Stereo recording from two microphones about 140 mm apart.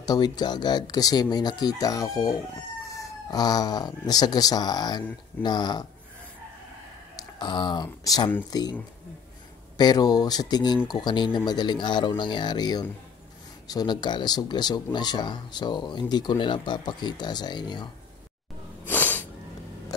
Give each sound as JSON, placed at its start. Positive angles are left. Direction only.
{"t": 0.0, "sound": "speech", "side_deg": 30}
{"t": 7.3, "sound": "speech", "side_deg": 30}
{"t": 9.8, "sound": "speech", "side_deg": 30}
{"t": 18.9, "sound": "sneeze", "side_deg": 10}